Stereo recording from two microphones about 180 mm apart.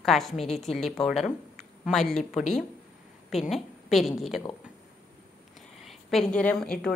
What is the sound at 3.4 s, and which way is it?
Speech, centre (ahead or behind).